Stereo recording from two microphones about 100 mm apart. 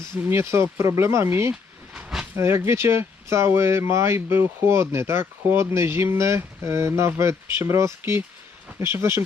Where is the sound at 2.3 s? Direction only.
25° right (ahead or behind).